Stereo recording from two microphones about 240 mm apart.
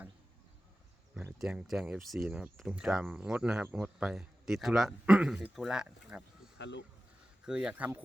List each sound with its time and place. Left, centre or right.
1.1 s speech: centre
6.6 s speech: left
7.4 s speech: centre